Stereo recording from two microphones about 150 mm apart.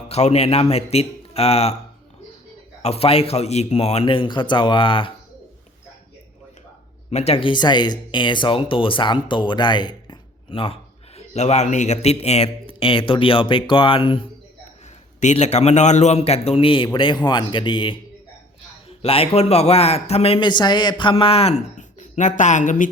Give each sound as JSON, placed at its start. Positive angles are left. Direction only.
{"t": 0.1, "sound": "a man's voice", "side_deg": 45}
{"t": 2.8, "sound": "speech", "side_deg": 40}
{"t": 7.1, "sound": "speech", "side_deg": 45}
{"t": 15.2, "sound": "speech", "side_deg": 50}
{"t": 19.0, "sound": "a man's voice", "side_deg": 40}